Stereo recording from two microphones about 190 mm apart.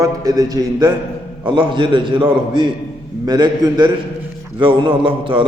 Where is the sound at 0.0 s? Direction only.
20° right (ahead or behind).